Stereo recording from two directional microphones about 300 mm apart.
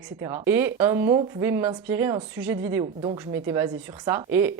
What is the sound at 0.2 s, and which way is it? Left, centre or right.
Speech, centre.